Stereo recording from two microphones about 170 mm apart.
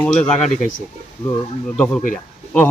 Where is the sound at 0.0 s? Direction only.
5° left (ahead or behind).